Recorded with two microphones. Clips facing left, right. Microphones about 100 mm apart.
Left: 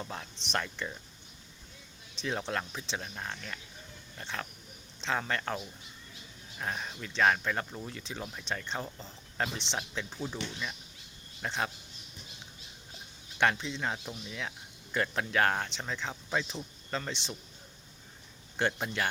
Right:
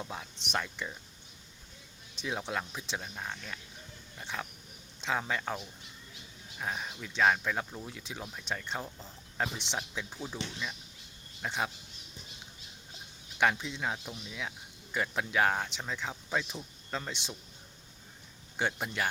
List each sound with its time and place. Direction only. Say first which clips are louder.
0.0 s speech: even; 5° right (ahead or behind)
2.2 s speech: left 1 dB; 5° right (ahead or behind)
11.4 s speech: even; 5° right (ahead or behind)
13.4 s speech: even; 5° right (ahead or behind)
18.5 s speech: left 2 dB; 5° right (ahead or behind)